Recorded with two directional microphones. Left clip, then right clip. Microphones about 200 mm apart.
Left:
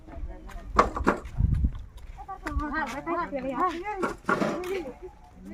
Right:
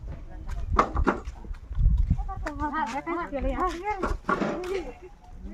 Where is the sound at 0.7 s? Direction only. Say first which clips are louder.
Left 1 dB; 55° left (ahead or behind).